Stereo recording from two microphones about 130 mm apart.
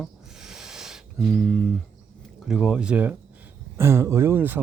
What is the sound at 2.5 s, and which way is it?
Speech, 5° right (ahead or behind).